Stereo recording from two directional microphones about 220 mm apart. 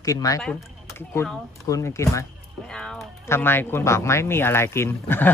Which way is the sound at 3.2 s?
10° left (ahead or behind).